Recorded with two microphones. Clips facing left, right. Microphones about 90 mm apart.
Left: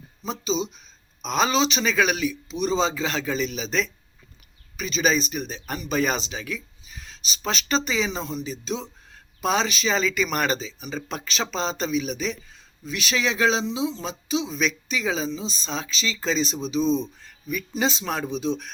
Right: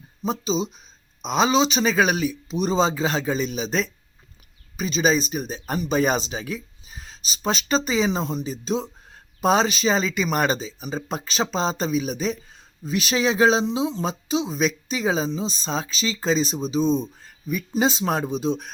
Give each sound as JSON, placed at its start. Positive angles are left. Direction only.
{"t": 0.3, "sound": "speech", "side_deg": -40}
{"t": 1.2, "sound": "speech", "side_deg": -25}
{"t": 8.6, "sound": "speech", "side_deg": -40}
{"t": 13.7, "sound": "speech", "side_deg": -50}
{"t": 17.5, "sound": "speech", "side_deg": -25}
{"t": 18.0, "sound": "speech", "side_deg": -40}